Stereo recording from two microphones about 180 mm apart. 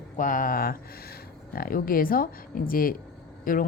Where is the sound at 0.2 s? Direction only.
45° left (ahead or behind).